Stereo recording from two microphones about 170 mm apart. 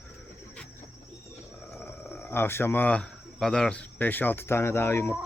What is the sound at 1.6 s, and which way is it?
Speech, 5° left (ahead or behind).